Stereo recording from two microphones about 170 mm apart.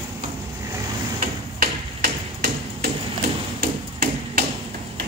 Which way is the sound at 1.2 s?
55° right (ahead or behind).